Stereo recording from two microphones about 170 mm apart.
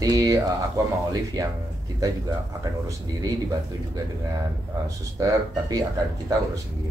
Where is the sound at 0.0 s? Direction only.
20° right (ahead or behind).